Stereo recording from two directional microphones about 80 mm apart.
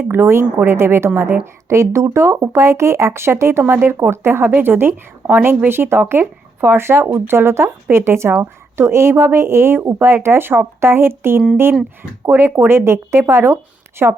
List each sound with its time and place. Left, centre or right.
0.0 s a woman's voice: right
14.0 s a woman's voice: right